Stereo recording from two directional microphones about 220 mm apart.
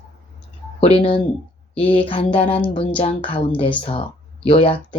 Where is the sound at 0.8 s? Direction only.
25° left (ahead or behind).